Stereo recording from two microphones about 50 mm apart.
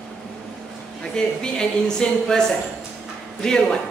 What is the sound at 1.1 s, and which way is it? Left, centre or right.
A woman's voice, centre.